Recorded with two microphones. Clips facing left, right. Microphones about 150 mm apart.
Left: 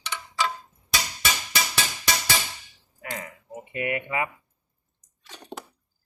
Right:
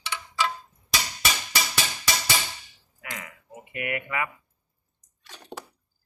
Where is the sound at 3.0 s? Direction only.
35° left (ahead or behind).